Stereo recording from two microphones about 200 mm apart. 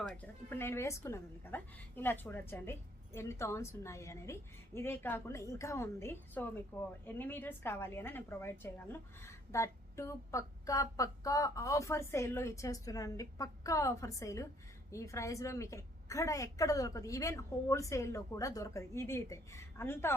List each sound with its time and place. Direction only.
0.1 s a woman's voice: 10° left (ahead or behind)